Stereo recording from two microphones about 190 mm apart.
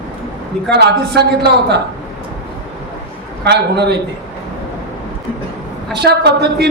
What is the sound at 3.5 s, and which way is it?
Speech, 60° right (ahead or behind).